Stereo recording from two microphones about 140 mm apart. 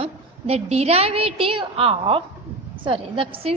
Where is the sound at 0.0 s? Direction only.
45° right (ahead or behind).